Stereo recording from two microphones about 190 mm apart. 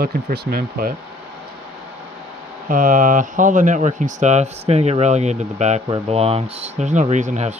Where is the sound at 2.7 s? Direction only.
45° right (ahead or behind).